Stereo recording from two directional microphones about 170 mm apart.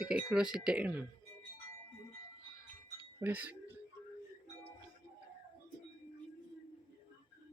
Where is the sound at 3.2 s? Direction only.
10° right (ahead or behind).